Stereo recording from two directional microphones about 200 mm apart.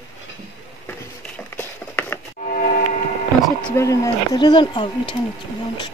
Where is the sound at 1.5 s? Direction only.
10° left (ahead or behind).